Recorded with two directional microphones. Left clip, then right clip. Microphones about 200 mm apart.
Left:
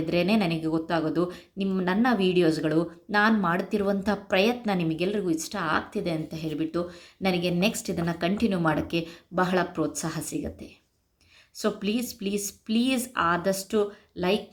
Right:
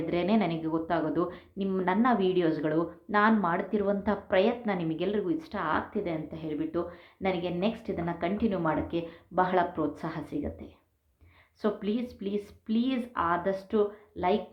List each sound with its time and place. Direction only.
0.1 s speech: 25° left (ahead or behind)
11.6 s speech: 30° left (ahead or behind)